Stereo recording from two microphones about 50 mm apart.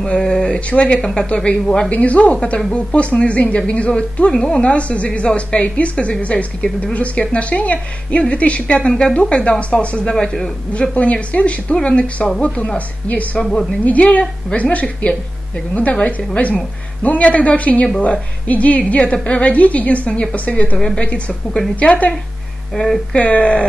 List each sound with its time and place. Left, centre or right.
0.2 s speech: centre
0.7 s a woman's voice: left
10.1 s a woman's voice: centre
10.7 s a woman's voice: left
20.7 s a woman's voice: centre
23.1 s a woman's voice: left